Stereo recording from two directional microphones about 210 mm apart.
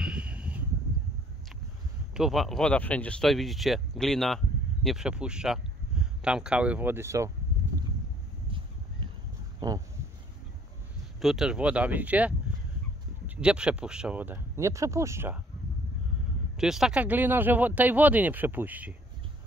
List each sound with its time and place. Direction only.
0.0 s a sound: 5° right (ahead or behind)
2.1 s speech: centre (ahead or behind)
8.5 s a sound: 25° right (ahead or behind)
9.6 s speech: 15° right (ahead or behind)
11.1 s speech: centre (ahead or behind)
13.4 s speech: 5° right (ahead or behind)
16.5 s speech: centre (ahead or behind)